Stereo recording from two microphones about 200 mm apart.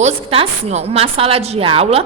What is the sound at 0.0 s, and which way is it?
A woman's voice, 30° right (ahead or behind).